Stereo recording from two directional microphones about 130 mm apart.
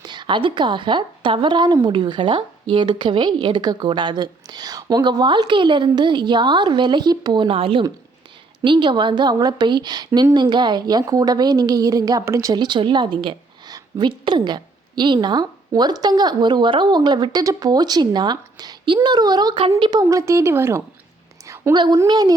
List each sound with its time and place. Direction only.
0.0 s a woman's voice: 35° right (ahead or behind); by 20.8 s 20° right (ahead or behind)
21.4 s a sound: 20° right (ahead or behind)
21.7 s a woman's voice: 30° right (ahead or behind)